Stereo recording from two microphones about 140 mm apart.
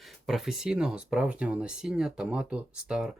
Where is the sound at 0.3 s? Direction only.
5° right (ahead or behind).